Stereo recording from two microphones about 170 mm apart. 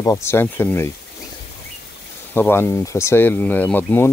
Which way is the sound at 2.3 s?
10° left (ahead or behind).